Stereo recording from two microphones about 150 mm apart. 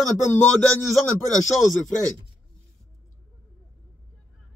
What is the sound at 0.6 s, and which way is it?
Speech, 5° left (ahead or behind).